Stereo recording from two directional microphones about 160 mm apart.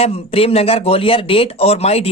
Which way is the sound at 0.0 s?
35° left (ahead or behind).